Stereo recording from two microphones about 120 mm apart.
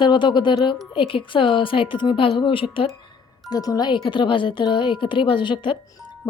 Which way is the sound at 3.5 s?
30° left (ahead or behind).